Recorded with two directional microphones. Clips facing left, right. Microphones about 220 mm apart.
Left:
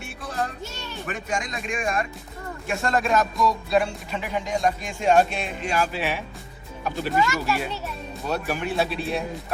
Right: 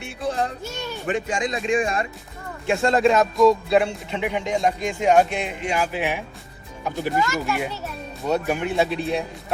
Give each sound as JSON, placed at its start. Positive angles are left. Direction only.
{"t": 0.0, "sound": "speech", "side_deg": -25}